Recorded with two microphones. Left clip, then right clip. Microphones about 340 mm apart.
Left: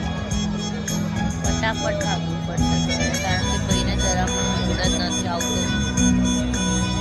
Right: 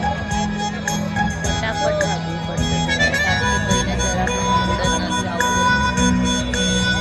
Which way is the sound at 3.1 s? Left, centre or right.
Right.